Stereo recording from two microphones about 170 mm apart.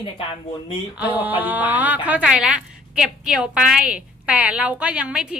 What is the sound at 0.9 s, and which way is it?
A woman's voice, 10° right (ahead or behind).